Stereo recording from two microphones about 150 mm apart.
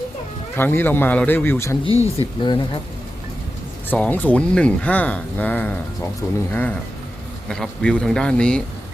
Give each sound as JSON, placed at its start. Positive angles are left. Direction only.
{"t": 0.5, "sound": "speech", "side_deg": 15}
{"t": 1.9, "sound": "speech", "side_deg": -20}
{"t": 2.4, "sound": "speech", "side_deg": 30}
{"t": 3.8, "sound": "speech", "side_deg": 10}